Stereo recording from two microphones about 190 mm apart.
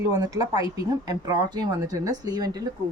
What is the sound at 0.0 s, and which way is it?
A woman's voice, 20° right (ahead or behind).